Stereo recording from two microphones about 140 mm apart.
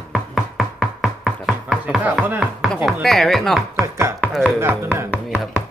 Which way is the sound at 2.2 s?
15° right (ahead or behind).